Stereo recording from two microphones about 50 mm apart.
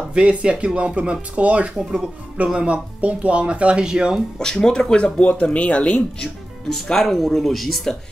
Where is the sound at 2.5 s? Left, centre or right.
Right.